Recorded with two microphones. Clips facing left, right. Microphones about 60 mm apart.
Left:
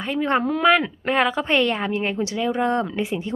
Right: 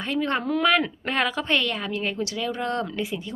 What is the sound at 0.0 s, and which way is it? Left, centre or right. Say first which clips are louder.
A woman's voice: left 4 dB; centre.